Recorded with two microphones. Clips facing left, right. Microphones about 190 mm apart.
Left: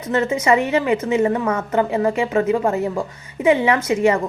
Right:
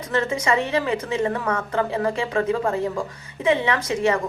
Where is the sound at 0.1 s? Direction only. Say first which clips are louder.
Left 5 dB; 25° left (ahead or behind).